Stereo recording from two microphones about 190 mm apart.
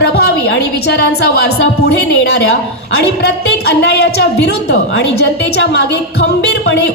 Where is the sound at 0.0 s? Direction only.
60° left (ahead or behind).